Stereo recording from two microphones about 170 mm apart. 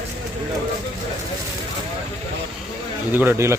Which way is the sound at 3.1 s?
10° right (ahead or behind).